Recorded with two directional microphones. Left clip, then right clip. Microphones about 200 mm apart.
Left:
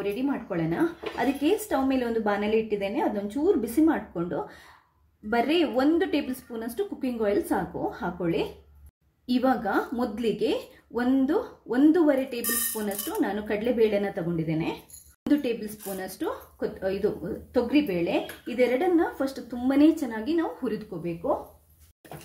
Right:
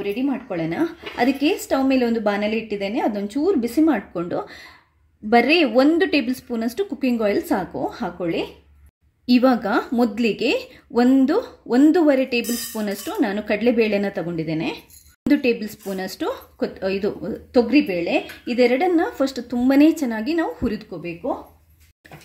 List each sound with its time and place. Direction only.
0.0 s speech: 45° right (ahead or behind)